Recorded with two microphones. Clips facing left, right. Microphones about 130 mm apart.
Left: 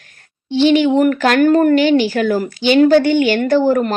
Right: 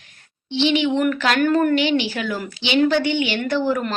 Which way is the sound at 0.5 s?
45° left (ahead or behind).